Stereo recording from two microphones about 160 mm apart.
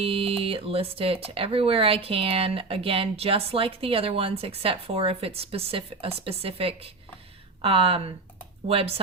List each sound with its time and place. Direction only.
0.0 s speech: 35° right (ahead or behind)